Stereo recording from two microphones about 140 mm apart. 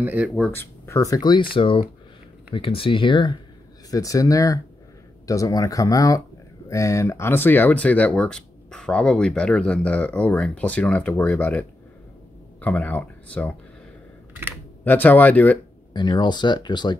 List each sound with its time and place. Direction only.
0.0 s speech: 10° right (ahead or behind)
0.5 s speech: 15° left (ahead or behind)
14.9 s speech: 10° left (ahead or behind)
15.9 s speech: 30° left (ahead or behind)